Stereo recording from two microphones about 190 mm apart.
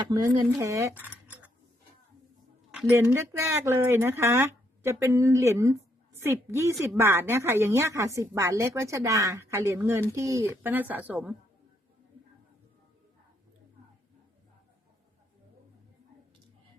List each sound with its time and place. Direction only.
0.1 s speech: 20° right (ahead or behind)
2.7 s a woman's voice: 10° right (ahead or behind)